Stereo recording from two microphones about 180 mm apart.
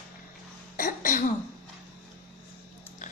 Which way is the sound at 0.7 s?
50° left (ahead or behind).